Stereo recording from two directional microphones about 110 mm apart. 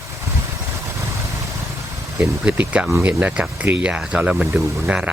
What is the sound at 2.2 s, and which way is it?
Speech, 15° right (ahead or behind).